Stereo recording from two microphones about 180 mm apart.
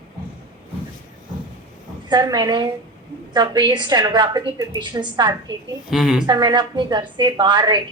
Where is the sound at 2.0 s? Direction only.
25° right (ahead or behind).